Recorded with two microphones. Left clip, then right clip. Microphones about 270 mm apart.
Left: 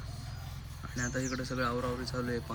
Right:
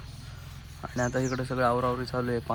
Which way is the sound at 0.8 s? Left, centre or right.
Centre.